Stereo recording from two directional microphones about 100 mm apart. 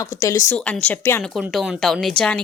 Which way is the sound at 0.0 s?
35° left (ahead or behind).